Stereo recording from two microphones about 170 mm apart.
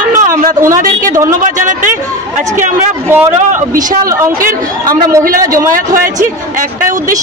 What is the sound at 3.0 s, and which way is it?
Speech, 15° right (ahead or behind).